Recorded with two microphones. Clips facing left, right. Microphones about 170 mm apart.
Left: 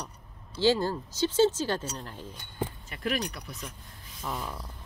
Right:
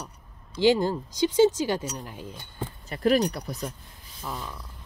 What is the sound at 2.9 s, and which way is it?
Speech, 40° right (ahead or behind).